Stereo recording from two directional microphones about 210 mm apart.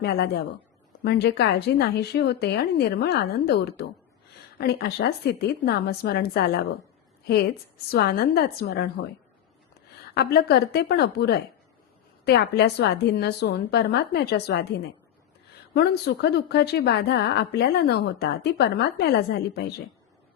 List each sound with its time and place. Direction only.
0.0 s a woman's voice: 50° left (ahead or behind)
10.2 s a woman's voice: 50° left (ahead or behind)
15.7 s a woman's voice: 50° left (ahead or behind)